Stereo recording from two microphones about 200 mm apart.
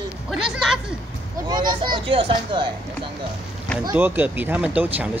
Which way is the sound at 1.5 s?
20° right (ahead or behind).